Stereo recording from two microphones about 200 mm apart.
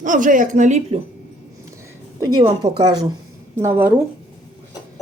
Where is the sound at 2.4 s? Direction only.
25° right (ahead or behind).